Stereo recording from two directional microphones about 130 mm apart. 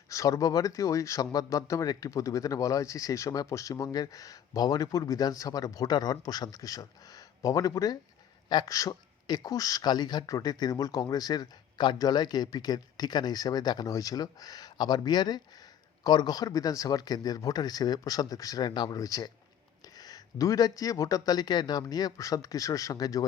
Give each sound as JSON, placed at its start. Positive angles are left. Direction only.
{"t": 0.1, "sound": "speech", "side_deg": 25}